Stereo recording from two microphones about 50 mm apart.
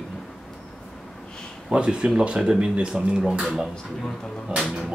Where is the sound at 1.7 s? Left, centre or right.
Centre.